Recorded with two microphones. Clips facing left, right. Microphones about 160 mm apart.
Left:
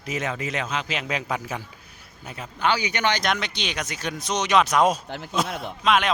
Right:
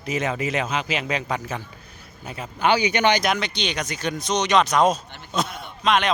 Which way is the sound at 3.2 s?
Centre (ahead or behind).